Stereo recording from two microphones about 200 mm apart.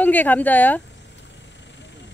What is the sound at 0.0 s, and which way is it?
Speech, 10° left (ahead or behind).